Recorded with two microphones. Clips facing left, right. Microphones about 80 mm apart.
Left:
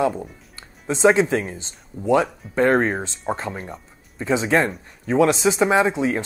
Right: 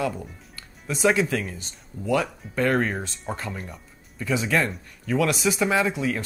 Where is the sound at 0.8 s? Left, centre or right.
Left.